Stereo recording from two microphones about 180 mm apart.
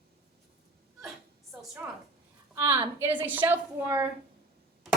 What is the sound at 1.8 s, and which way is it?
A woman's voice, 10° right (ahead or behind).